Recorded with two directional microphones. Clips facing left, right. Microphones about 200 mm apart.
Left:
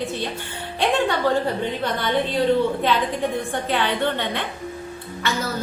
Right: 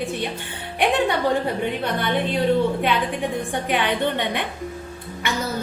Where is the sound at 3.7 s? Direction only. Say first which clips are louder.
Right 1 dB; 15° right (ahead or behind).